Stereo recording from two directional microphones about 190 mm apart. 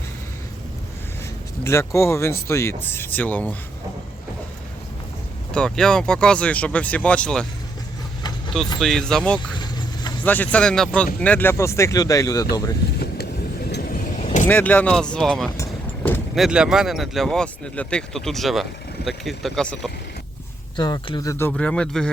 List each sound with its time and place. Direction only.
1.6 s speech: 15° left (ahead or behind)
5.5 s speech: 5° left (ahead or behind)
8.8 s speech: 5° left (ahead or behind)
13.7 s vehicle: 55° left (ahead or behind)
14.2 s vehicle: 35° left (ahead or behind)
14.4 s speech: 10° left (ahead or behind)
15.5 s vehicle: 15° left (ahead or behind)
16.3 s speech: centre (ahead or behind)
20.7 s speech: 25° left (ahead or behind); by 22.1 s 5° left (ahead or behind)